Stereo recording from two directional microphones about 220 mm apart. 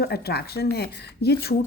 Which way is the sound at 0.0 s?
45° left (ahead or behind).